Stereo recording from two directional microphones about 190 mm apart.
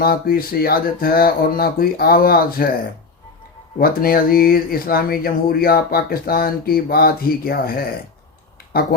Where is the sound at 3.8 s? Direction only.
50° left (ahead or behind).